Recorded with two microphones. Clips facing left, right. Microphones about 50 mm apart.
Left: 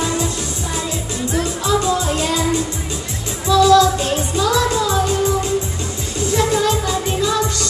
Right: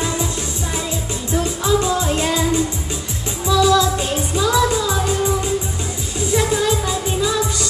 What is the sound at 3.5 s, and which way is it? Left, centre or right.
Music, centre.